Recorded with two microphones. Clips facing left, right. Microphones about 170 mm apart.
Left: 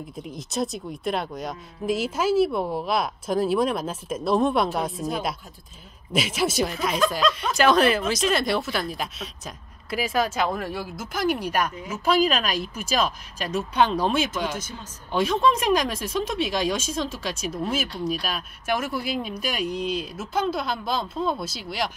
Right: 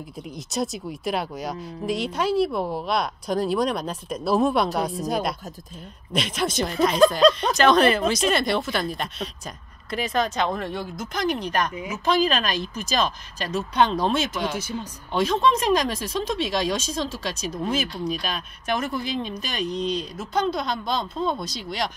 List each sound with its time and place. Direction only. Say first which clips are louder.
0.4 s speech: even; centre (ahead or behind)
6.1 s speech: left 1 dB; 5° left (ahead or behind)
7.2 s speech: right 6 dB; 35° right (ahead or behind)
7.5 s speech: right 1 dB; 5° left (ahead or behind)
11.7 s speech: right 2 dB; 10° right (ahead or behind)
12.0 s speech: left 1 dB; 10° left (ahead or behind)
14.5 s speech: right 4 dB; 10° right (ahead or behind)
15.1 s speech: even; 5° left (ahead or behind)